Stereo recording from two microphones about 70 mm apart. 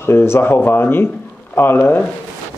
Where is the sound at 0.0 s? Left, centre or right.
Left.